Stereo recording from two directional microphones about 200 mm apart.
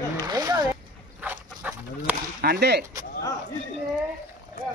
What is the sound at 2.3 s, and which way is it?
Speech, 55° right (ahead or behind).